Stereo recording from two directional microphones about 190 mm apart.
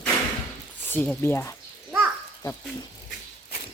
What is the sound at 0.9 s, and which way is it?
Speech, 10° left (ahead or behind).